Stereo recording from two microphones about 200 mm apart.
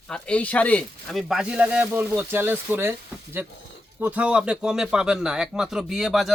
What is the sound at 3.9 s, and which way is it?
Speech, 5° right (ahead or behind).